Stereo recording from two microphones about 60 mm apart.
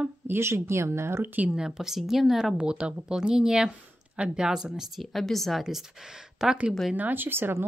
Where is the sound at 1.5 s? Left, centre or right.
Centre.